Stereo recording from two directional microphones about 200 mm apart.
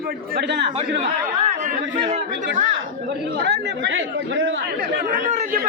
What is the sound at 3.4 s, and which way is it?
Speech, 60° right (ahead or behind).